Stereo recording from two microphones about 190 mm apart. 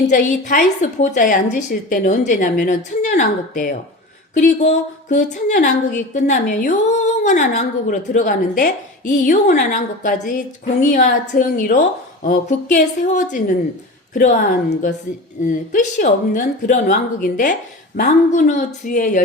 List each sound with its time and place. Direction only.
0.4 s a woman's voice: 40° left (ahead or behind)